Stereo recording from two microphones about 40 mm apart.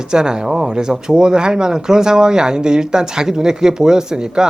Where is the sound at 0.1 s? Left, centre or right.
Centre.